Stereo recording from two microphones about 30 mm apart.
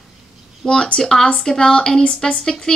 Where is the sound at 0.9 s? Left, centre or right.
Centre.